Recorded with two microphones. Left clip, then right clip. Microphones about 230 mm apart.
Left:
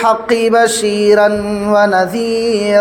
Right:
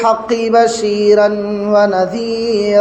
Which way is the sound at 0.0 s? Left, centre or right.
Left.